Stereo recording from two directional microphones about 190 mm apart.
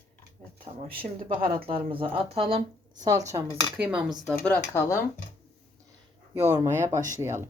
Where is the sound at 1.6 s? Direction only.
30° right (ahead or behind).